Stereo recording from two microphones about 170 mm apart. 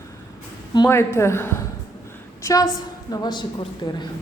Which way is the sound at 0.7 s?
20° left (ahead or behind).